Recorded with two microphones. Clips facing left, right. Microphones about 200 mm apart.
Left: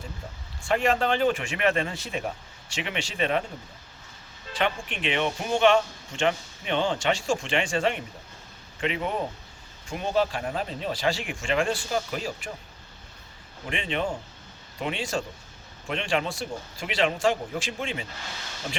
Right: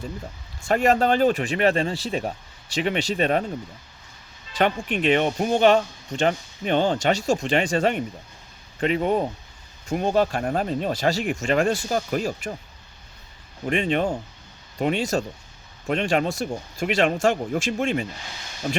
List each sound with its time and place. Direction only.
0.6 s speech: 40° right (ahead or behind)
4.5 s speech: 40° right (ahead or behind)
13.7 s speech: 40° right (ahead or behind)